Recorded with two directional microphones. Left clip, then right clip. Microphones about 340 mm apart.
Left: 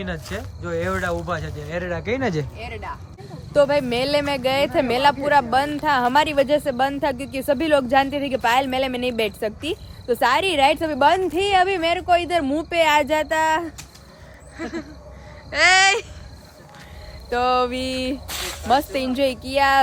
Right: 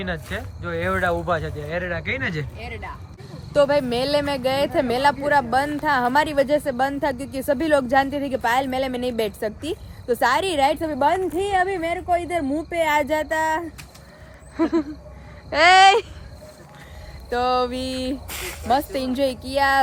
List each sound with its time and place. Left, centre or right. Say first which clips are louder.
0.0 s speech: right 1 dB; centre
3.5 s speech: left 1 dB; centre
14.5 s speech: right 9 dB; centre
17.2 s speech: left 1 dB; centre
18.3 s speech: left 3 dB; left
18.7 s speech: left 2 dB; centre